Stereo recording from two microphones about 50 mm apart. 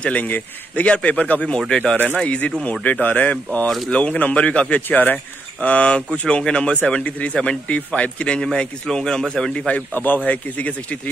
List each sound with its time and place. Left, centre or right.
0.2 s speech: left
4.8 s speech: left
5.1 s speech: left
8.5 s speech: centre
9.9 s speech: left